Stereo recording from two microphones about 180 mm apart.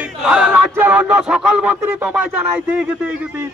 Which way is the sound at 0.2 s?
5° right (ahead or behind).